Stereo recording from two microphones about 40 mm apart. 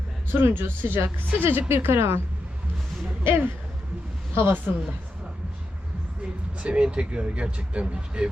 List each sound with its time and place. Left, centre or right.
0.3 s speech: right
1.6 s speech: right
3.2 s speech: right
4.7 s a woman's voice: right
6.6 s speech: right